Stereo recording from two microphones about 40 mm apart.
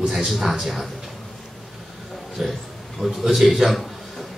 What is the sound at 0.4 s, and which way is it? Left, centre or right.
Speech, centre.